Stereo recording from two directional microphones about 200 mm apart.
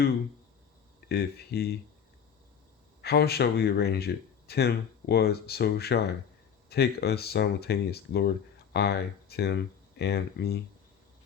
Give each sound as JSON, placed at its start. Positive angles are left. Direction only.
{"t": 1.0, "sound": "speech", "side_deg": 55}
{"t": 3.0, "sound": "speech", "side_deg": 55}